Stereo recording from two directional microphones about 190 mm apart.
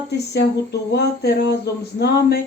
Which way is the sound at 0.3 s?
60° left (ahead or behind).